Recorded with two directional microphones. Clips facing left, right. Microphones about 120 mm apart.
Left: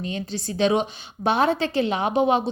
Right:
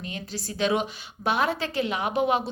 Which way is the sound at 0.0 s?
25° left (ahead or behind).